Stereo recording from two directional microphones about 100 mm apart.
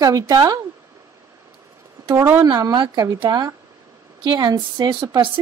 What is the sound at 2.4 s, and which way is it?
Speech, 40° right (ahead or behind).